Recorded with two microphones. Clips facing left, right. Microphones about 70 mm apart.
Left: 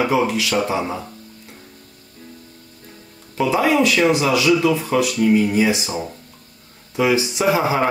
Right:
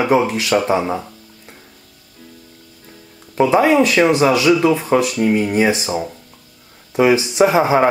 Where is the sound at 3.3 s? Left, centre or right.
Right.